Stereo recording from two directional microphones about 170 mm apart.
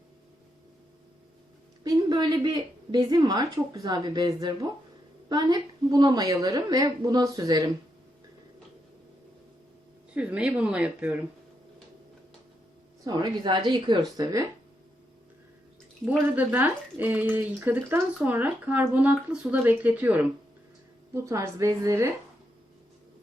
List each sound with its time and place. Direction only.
1.8 s a woman's voice: 25° right (ahead or behind)
10.2 s speech: 5° right (ahead or behind)
13.1 s a woman's voice: 25° right (ahead or behind)
16.0 s speech: 10° right (ahead or behind)